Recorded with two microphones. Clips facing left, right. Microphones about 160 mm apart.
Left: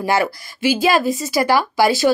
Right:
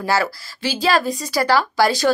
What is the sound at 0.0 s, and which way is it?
A woman's voice, 20° left (ahead or behind).